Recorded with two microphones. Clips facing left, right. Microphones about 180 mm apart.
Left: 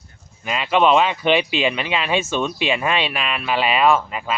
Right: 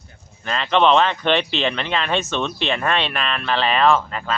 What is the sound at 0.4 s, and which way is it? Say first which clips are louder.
Speech: even; 10° left (ahead or behind).